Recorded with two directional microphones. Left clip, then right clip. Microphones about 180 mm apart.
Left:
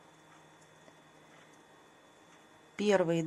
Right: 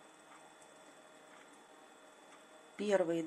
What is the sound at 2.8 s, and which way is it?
Speech, 35° left (ahead or behind).